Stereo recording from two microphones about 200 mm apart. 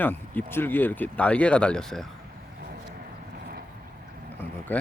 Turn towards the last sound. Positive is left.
turn(degrees=10)  # may be behind; listen again after turning